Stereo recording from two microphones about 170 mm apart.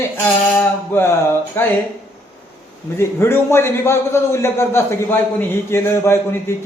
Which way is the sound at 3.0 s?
15° left (ahead or behind).